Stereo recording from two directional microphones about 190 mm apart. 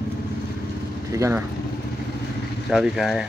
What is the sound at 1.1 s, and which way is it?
Speech, 15° right (ahead or behind).